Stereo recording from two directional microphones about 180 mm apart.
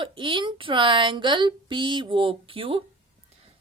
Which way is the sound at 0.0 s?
30° right (ahead or behind).